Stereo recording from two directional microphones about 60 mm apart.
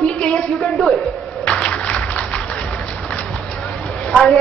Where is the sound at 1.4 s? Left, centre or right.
Centre.